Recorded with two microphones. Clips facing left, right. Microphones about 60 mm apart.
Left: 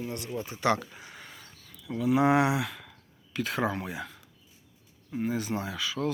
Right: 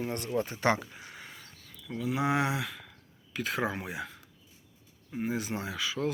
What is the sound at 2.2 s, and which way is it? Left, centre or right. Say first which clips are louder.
Speech: left 6 dB; left.